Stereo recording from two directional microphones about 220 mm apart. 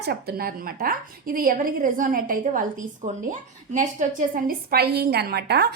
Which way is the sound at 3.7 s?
35° right (ahead or behind).